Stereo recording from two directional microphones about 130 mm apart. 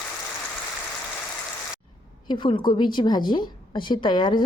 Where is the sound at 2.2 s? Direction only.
40° left (ahead or behind).